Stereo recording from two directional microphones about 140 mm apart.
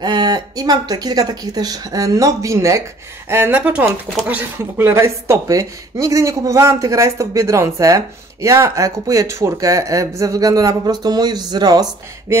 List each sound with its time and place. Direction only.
0.0 s speech: 30° right (ahead or behind)